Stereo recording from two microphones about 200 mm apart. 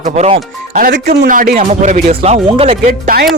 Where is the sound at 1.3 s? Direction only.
45° right (ahead or behind).